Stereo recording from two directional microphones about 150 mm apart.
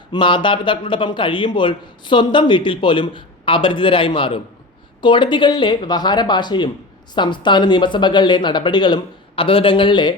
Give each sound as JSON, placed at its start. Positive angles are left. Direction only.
{"t": 0.1, "sound": "speech", "side_deg": 30}